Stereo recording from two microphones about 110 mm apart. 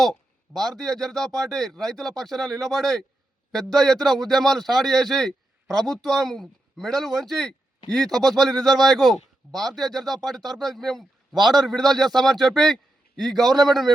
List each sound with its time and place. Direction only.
0.0 s a man's voice: 5° left (ahead or behind)
8.7 s speech: 35° right (ahead or behind)
9.0 s a man's voice: centre (ahead or behind)